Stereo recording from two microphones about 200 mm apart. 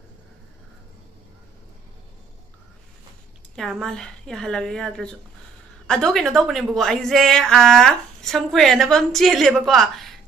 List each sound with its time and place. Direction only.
3.5 s speech: centre (ahead or behind)